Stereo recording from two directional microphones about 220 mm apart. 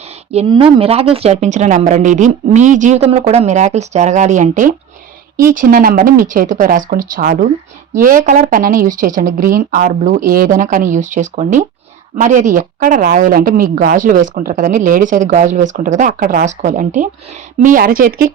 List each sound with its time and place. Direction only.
0.3 s a woman's voice: 25° right (ahead or behind)